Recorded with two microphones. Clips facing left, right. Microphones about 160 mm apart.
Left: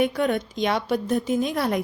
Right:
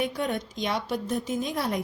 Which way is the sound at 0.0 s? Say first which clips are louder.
Left 6 dB; 65° left (ahead or behind).